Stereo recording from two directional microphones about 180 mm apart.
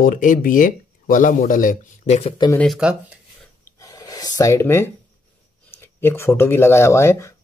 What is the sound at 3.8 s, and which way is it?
Gasp, 20° left (ahead or behind).